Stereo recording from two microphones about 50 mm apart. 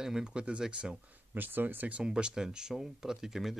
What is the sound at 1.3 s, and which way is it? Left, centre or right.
Speech, right.